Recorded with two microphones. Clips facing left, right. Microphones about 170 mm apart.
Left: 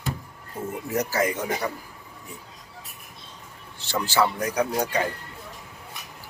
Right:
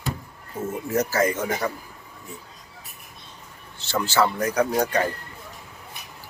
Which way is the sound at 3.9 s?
15° left (ahead or behind).